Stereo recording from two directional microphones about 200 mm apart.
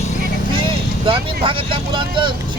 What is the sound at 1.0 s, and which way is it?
Speech, 25° right (ahead or behind).